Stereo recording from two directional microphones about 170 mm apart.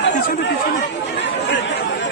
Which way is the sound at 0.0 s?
90° left.